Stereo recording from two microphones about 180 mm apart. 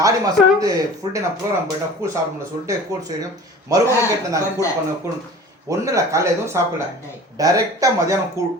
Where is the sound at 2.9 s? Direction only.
20° right (ahead or behind).